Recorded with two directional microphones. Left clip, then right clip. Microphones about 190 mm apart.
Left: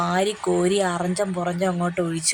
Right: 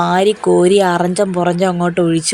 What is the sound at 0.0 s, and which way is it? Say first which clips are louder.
A woman's voice: right 9 dB; 30° right (ahead or behind).